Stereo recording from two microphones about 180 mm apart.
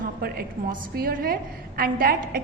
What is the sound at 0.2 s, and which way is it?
A woman's voice, 55° right (ahead or behind).